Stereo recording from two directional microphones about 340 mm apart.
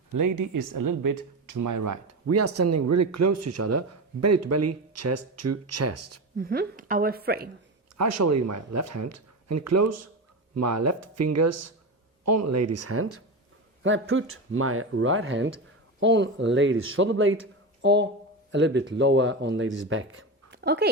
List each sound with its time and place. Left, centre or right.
0.1 s speech: right
6.3 s a woman's voice: right
7.9 s speech: right